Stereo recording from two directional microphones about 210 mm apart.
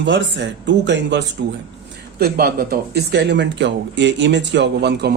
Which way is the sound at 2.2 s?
45° right (ahead or behind).